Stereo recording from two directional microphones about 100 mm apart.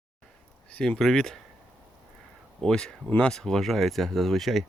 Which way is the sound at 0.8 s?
5° left (ahead or behind).